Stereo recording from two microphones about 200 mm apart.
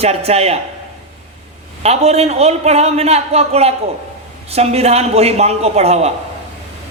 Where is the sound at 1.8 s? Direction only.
30° right (ahead or behind).